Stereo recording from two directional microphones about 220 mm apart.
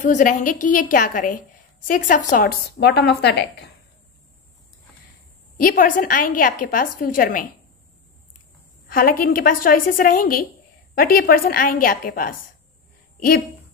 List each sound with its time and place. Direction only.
0.0 s a woman's voice: 35° left (ahead or behind)
5.6 s a woman's voice: 40° left (ahead or behind)
8.9 s a woman's voice: 40° left (ahead or behind)